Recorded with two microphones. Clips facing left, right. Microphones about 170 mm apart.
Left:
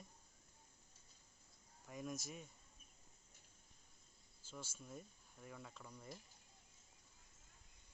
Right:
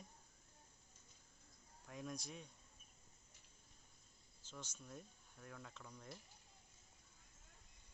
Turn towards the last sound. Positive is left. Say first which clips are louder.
# left 1 dB
turn(degrees=5)  # may be behind; listen again after turning